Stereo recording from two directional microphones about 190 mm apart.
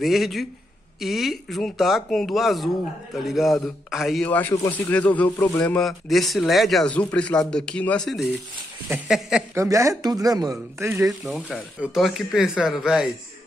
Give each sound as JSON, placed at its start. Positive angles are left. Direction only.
{"t": 0.0, "sound": "a man's voice", "side_deg": 0}
{"t": 9.6, "sound": "speech", "side_deg": -15}
{"t": 11.1, "sound": "a man's voice", "side_deg": 0}